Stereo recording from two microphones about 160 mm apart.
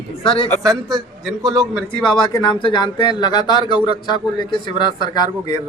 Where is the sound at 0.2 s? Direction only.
35° left (ahead or behind).